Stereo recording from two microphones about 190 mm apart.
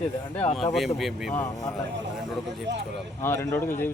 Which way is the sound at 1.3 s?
10° left (ahead or behind).